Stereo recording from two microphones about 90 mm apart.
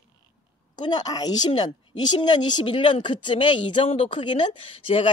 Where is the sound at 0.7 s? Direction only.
55° left (ahead or behind).